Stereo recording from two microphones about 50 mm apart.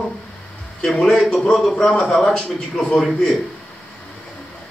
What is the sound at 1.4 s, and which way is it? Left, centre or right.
A man's voice, centre.